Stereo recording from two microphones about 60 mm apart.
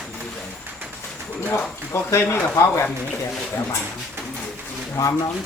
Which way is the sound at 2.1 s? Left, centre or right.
Left.